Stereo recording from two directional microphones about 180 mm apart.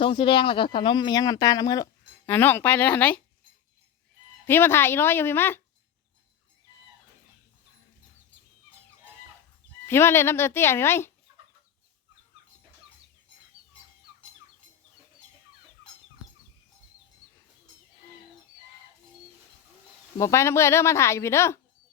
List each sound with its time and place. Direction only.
0.0 s speech: 30° left (ahead or behind); by 3.2 s 10° left (ahead or behind)
4.4 s speech: 10° left (ahead or behind)
9.8 s speech: 15° left (ahead or behind)
20.1 s speech: 15° left (ahead or behind)